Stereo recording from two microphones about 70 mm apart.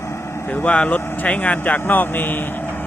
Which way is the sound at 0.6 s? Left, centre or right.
Centre.